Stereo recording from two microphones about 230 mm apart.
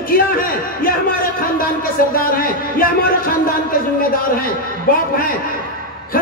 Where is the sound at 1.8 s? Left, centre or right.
Left.